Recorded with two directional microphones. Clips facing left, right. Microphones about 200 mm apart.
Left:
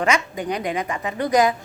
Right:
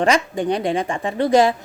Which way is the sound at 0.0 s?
30° right (ahead or behind).